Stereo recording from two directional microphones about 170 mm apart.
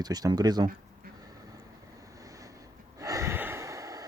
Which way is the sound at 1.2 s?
20° right (ahead or behind).